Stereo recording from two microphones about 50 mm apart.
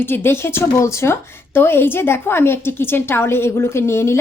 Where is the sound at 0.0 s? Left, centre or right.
Left.